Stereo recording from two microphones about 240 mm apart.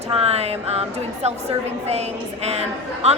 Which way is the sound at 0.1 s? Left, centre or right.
Right.